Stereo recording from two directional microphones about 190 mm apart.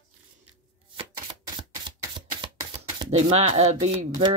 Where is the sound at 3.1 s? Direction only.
35° right (ahead or behind).